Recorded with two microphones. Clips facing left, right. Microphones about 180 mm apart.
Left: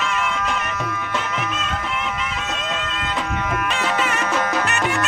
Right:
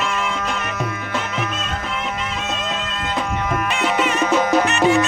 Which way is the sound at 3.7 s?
15° right (ahead or behind).